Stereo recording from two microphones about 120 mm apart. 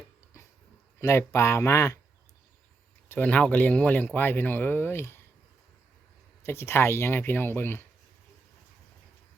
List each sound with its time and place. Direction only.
1.0 s speech: 25° left (ahead or behind)
3.1 s speech: 10° left (ahead or behind)
6.4 s speech: 20° left (ahead or behind)